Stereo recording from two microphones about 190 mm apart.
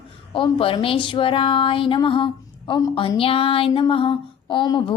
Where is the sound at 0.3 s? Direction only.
25° left (ahead or behind).